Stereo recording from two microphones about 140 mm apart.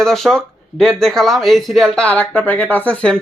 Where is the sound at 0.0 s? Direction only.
5° left (ahead or behind).